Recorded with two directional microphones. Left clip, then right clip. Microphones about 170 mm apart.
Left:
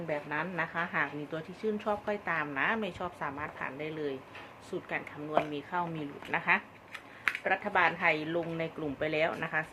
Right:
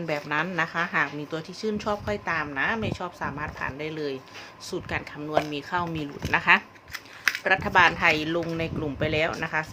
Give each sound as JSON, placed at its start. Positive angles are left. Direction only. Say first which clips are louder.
{"t": 0.1, "sound": "a woman's voice", "louder": "right 7 dB", "side_deg": -35}
{"t": 7.4, "sound": "a woman's voice", "louder": "right 9 dB", "side_deg": -30}